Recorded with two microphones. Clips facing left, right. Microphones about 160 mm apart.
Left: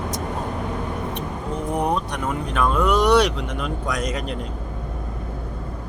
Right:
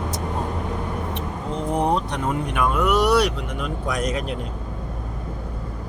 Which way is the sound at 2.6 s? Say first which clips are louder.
Left 1 dB; 5° right (ahead or behind).